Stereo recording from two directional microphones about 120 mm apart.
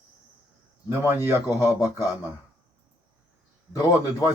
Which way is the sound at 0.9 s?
20° right (ahead or behind).